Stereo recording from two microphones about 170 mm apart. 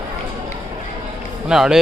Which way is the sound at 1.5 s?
5° right (ahead or behind).